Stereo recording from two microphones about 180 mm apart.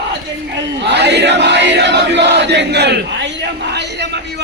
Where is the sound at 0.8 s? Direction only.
70° right (ahead or behind).